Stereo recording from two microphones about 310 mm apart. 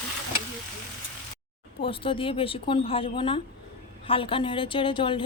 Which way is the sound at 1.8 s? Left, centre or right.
Centre.